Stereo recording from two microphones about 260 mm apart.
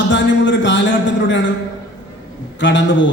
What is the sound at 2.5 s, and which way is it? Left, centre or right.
Speech, left.